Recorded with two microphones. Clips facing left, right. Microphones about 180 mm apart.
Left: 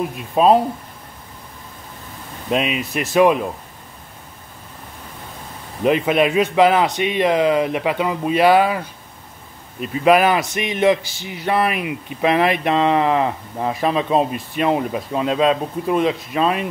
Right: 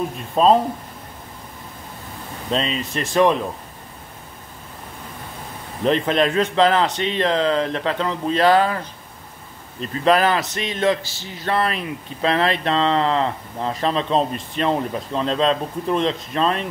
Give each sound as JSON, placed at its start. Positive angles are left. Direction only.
{"t": 0.4, "sound": "speech", "side_deg": 10}
{"t": 2.5, "sound": "speech", "side_deg": 10}
{"t": 5.9, "sound": "speech", "side_deg": 10}